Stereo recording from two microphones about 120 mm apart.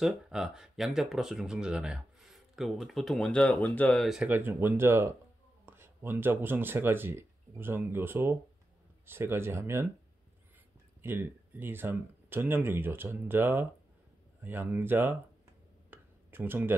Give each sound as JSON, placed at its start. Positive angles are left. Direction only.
{"t": 0.0, "sound": "speech", "side_deg": -5}
{"t": 4.0, "sound": "speech", "side_deg": -5}
{"t": 4.3, "sound": "speech", "side_deg": -15}
{"t": 11.0, "sound": "speech", "side_deg": -15}
{"t": 15.9, "sound": "a sound", "side_deg": -15}